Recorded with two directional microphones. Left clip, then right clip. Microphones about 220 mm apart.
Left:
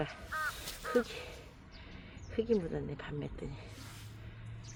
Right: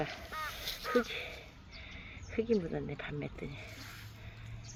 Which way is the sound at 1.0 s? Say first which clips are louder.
Right 4 dB; 5° left (ahead or behind).